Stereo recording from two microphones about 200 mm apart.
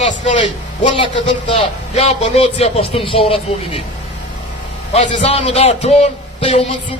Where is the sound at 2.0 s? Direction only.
30° left (ahead or behind).